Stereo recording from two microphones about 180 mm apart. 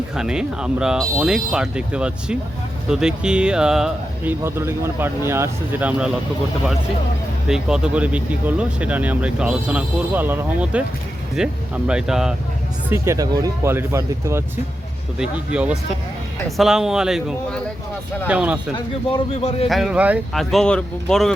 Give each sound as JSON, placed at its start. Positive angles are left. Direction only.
{"t": 0.2, "sound": "speech", "side_deg": -5}
{"t": 7.4, "sound": "speech", "side_deg": -5}
{"t": 12.9, "sound": "speech", "side_deg": -15}
{"t": 19.1, "sound": "a man's voice", "side_deg": 35}
{"t": 19.6, "sound": "speech", "side_deg": 0}